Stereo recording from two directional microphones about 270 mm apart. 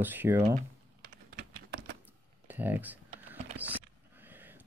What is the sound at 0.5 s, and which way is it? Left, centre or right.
Typing, right.